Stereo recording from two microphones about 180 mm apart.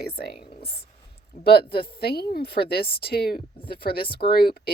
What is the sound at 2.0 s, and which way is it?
Speech, 60° left (ahead or behind).